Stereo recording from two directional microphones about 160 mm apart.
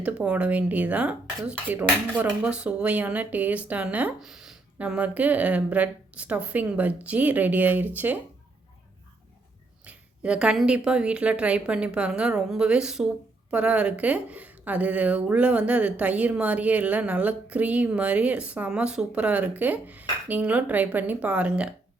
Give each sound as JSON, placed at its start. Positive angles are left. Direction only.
{"t": 0.0, "sound": "speech", "side_deg": -5}
{"t": 9.8, "sound": "speech", "side_deg": -5}